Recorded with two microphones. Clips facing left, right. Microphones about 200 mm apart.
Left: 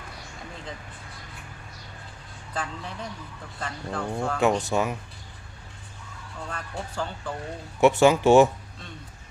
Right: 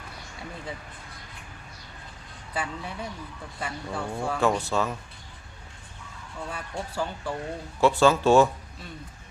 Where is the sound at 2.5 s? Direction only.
10° right (ahead or behind).